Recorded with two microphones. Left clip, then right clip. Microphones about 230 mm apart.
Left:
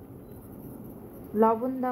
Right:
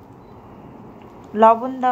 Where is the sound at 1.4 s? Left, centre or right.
Centre.